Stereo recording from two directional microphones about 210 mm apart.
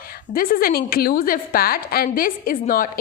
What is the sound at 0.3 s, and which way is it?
A woman's voice, 45° left (ahead or behind).